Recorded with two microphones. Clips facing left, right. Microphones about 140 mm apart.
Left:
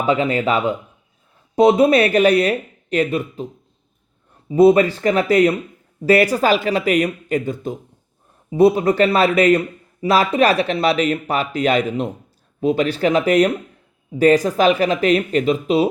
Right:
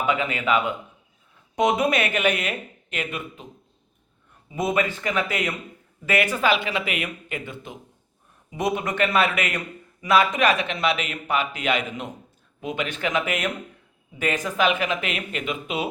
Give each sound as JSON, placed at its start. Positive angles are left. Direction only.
{"t": 0.0, "sound": "a man's voice", "side_deg": 35}